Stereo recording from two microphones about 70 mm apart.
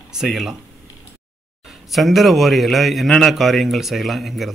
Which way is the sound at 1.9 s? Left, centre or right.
Centre.